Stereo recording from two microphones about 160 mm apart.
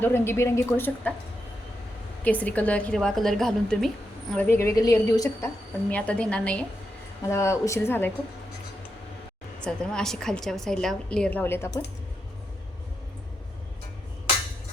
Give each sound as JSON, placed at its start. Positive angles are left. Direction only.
{"t": 0.0, "sound": "a woman's voice", "side_deg": 15}
{"t": 2.2, "sound": "a woman's voice", "side_deg": 10}
{"t": 4.4, "sound": "a woman's voice", "side_deg": 15}
{"t": 5.9, "sound": "a woman's voice", "side_deg": 10}
{"t": 7.3, "sound": "a woman's voice", "side_deg": 15}
{"t": 9.6, "sound": "a woman's voice", "side_deg": 5}